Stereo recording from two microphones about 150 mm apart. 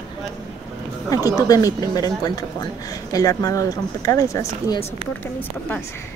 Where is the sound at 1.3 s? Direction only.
25° left (ahead or behind).